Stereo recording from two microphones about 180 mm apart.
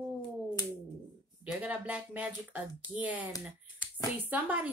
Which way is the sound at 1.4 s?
5° right (ahead or behind).